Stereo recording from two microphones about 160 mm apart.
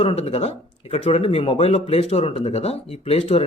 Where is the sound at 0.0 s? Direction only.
35° left (ahead or behind).